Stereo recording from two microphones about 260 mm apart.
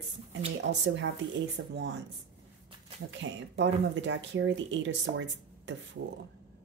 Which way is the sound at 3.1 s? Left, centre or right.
Right.